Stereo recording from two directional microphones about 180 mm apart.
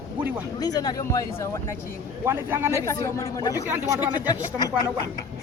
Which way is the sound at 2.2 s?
10° right (ahead or behind).